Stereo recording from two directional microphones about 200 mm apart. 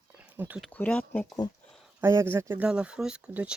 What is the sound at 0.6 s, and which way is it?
Speech, 5° left (ahead or behind).